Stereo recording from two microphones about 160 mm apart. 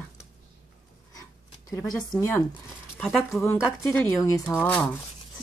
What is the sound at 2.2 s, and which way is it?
Speech, 15° left (ahead or behind).